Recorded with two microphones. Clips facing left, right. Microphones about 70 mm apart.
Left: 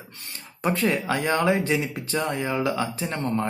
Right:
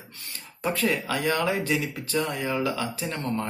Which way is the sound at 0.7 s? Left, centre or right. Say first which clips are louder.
Left 3 dB; left.